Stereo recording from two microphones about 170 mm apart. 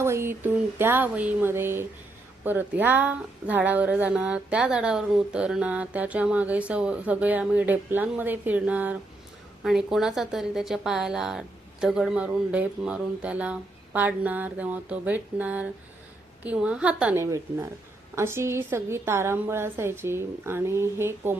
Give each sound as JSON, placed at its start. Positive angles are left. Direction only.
{"t": 0.0, "sound": "a woman's voice", "side_deg": -15}
{"t": 17.2, "sound": "speech", "side_deg": -20}